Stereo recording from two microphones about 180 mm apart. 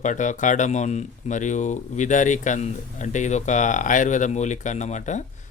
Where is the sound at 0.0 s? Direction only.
45° left (ahead or behind).